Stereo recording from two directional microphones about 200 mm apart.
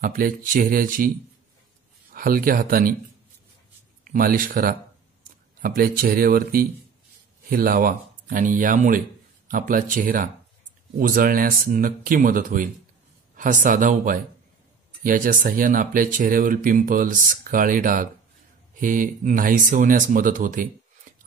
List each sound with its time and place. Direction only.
0.0 s speech: 45° right (ahead or behind)
2.1 s speech: 45° right (ahead or behind)
4.0 s speech: 45° right (ahead or behind)